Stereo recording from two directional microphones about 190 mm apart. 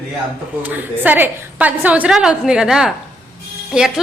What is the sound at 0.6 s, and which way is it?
A woman's voice, 10° right (ahead or behind).